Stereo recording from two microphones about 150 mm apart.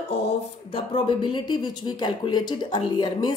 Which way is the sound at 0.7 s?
35° left (ahead or behind).